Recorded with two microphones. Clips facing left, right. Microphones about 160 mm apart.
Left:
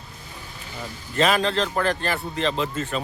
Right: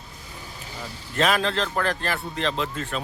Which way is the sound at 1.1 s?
Centre (ahead or behind).